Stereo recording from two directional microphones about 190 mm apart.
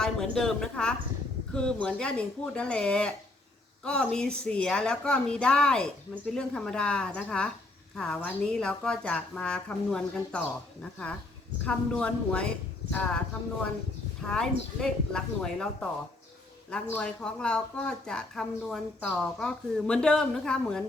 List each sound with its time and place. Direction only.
0.0 s speech: 5° left (ahead or behind)
11.6 s speech: 5° left (ahead or behind)